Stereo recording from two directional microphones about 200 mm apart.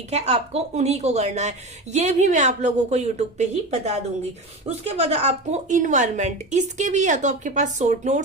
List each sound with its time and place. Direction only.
0.1 s a woman's voice: 30° right (ahead or behind)